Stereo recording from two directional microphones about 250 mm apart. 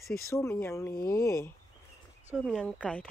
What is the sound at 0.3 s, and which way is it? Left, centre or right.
Speech, centre.